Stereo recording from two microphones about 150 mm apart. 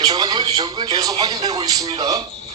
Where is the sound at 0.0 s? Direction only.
25° right (ahead or behind).